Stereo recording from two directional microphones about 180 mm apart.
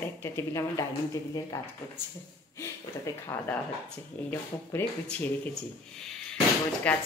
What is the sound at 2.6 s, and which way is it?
Speech, 15° left (ahead or behind).